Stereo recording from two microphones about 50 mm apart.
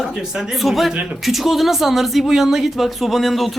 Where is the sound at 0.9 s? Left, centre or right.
Centre.